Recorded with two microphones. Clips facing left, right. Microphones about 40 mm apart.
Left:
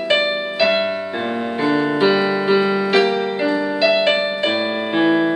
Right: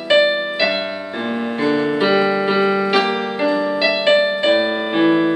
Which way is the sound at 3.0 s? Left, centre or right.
Right.